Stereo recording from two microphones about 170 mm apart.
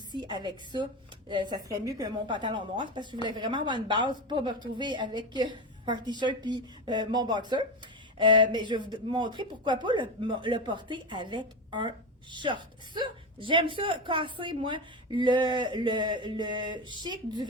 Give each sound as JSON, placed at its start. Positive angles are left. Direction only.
{"t": 0.2, "sound": "a woman's voice", "side_deg": -25}